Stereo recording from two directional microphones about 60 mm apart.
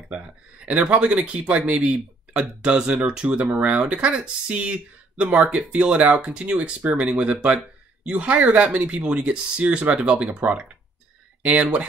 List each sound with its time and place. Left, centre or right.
0.1 s speech: right